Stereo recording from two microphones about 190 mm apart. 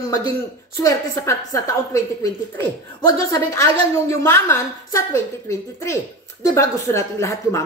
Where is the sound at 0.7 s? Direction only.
15° left (ahead or behind).